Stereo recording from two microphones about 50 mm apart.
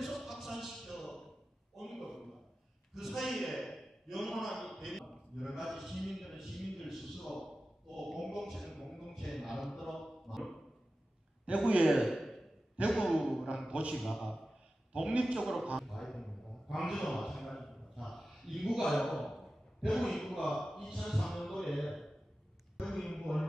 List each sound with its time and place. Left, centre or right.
0.0 s a sound: centre
2.9 s a man's voice: centre
11.4 s a man's voice: right
13.2 s a man's voice: centre
13.7 s a man's voice: right
13.9 s a man's voice: centre
14.9 s a man's voice: right
15.3 s a man's voice: centre
15.9 s a sound: centre
16.6 s a man's voice: centre
17.0 s a sound: centre
19.9 s a man's voice: centre
22.8 s a sound: centre